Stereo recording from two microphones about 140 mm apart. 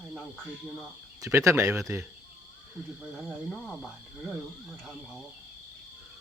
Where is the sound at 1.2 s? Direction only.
20° right (ahead or behind).